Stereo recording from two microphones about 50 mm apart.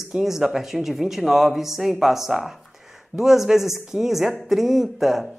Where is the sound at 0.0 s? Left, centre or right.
Centre.